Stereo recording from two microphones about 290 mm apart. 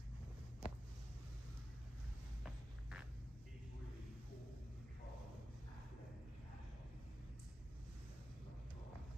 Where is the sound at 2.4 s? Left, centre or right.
Centre.